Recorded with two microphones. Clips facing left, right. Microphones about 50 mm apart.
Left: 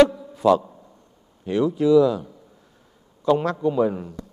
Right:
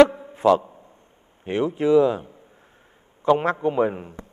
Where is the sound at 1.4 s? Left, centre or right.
Right.